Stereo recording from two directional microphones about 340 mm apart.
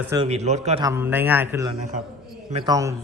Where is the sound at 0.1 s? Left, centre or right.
Centre.